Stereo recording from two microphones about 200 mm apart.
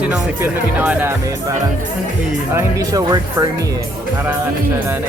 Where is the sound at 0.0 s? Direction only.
5° right (ahead or behind).